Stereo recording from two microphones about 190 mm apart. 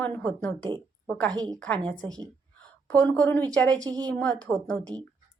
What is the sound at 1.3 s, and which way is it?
Speech, 20° right (ahead or behind).